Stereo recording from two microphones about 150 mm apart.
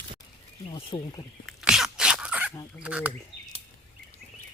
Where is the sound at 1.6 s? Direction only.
5° right (ahead or behind).